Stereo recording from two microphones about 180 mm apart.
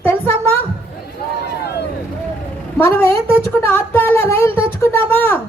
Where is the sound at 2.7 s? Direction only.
15° left (ahead or behind).